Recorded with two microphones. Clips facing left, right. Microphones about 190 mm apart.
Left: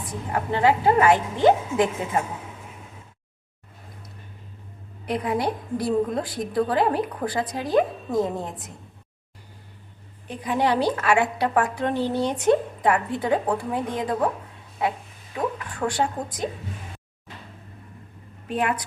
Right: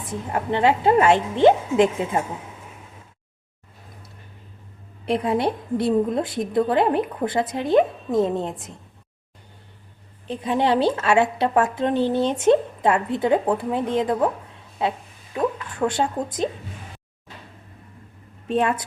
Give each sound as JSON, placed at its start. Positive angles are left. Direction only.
{"t": 0.1, "sound": "a woman's voice", "side_deg": -25}
{"t": 5.0, "sound": "a woman's voice", "side_deg": -25}
{"t": 10.2, "sound": "a woman's voice", "side_deg": -25}
{"t": 18.4, "sound": "a woman's voice", "side_deg": -25}